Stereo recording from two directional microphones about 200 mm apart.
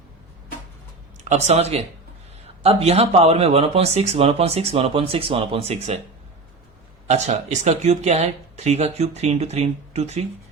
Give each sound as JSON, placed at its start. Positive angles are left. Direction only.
{"t": 1.2, "sound": "speech", "side_deg": -35}
{"t": 7.1, "sound": "speech", "side_deg": -35}